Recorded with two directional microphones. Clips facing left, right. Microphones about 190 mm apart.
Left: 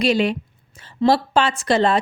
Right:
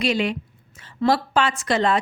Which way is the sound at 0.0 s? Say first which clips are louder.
Left 4 dB; 35° left (ahead or behind).